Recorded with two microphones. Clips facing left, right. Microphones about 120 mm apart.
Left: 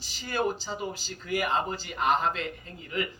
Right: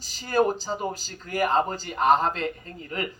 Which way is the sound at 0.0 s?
40° right (ahead or behind).